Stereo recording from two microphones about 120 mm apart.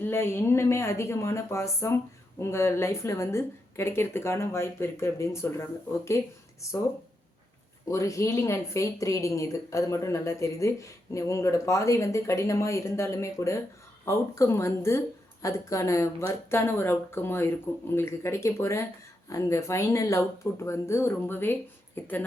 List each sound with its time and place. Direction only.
0.0 s a woman's voice: 20° left (ahead or behind)
7.9 s a woman's voice: 25° left (ahead or behind)